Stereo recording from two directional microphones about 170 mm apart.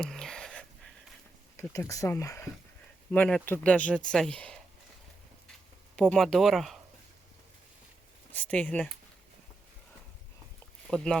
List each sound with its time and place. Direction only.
0.0 s a sound: 5° left (ahead or behind)
1.5 s speech: 15° left (ahead or behind)
3.1 s speech: 5° left (ahead or behind)
6.0 s speech: 5° left (ahead or behind)
8.3 s speech: 10° left (ahead or behind)
10.9 s speech: 5° left (ahead or behind)